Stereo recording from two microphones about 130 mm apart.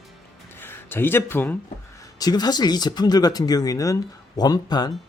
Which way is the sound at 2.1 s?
30° left (ahead or behind).